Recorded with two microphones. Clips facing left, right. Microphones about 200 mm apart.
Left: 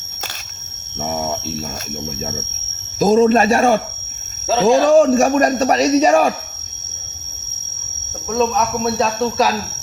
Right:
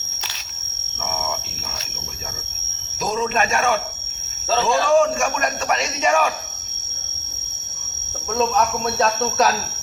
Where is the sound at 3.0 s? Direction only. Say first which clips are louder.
Left 10 dB; 35° left (ahead or behind).